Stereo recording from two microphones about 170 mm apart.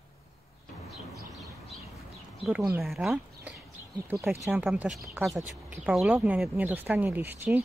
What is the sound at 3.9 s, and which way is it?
Speech, 20° right (ahead or behind).